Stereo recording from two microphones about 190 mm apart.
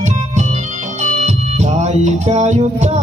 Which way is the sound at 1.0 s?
40° right (ahead or behind).